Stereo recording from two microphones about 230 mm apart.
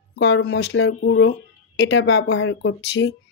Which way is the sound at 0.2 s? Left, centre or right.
Left.